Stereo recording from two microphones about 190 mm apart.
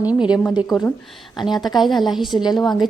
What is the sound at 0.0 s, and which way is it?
A woman's voice, 5° right (ahead or behind).